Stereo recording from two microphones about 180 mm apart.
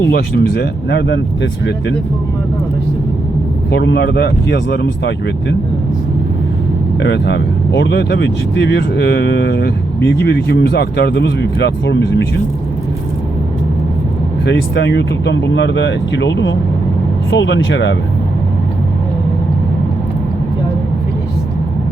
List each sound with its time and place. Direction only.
0.1 s speech: 60° left (ahead or behind)
3.7 s speech: 70° left (ahead or behind)
7.0 s speech: 75° left (ahead or behind)
14.4 s speech: 70° left (ahead or behind); by 17.9 s 85° left